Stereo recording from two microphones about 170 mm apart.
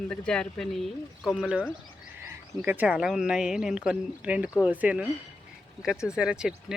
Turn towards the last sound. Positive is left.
turn(degrees=-5)  # may be behind; listen again after turning